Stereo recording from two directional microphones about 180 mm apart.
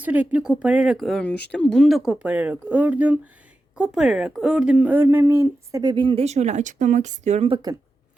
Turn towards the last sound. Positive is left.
turn(degrees=-35)  # may be behind; listen again after turning